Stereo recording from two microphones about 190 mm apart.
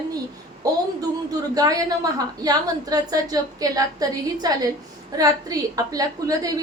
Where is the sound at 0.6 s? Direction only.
20° right (ahead or behind).